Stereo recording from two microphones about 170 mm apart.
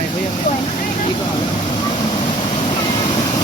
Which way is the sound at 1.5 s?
35° left (ahead or behind).